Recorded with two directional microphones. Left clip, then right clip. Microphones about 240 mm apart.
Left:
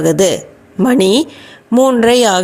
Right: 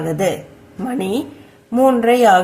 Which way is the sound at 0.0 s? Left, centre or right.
Left.